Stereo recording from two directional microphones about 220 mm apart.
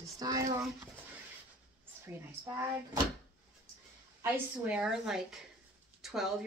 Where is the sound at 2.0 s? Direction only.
15° right (ahead or behind).